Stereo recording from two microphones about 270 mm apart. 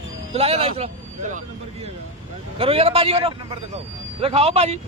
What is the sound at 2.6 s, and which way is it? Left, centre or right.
A man's voice, right.